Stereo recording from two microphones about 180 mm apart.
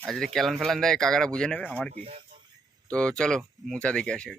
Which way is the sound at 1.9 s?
35° right (ahead or behind).